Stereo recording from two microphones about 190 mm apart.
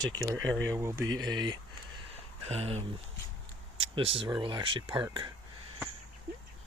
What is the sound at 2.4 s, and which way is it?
Speech, 35° right (ahead or behind).